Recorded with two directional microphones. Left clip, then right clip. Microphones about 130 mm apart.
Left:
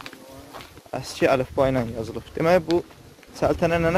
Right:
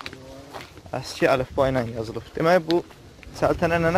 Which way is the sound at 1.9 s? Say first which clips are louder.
Even; 40° left (ahead or behind).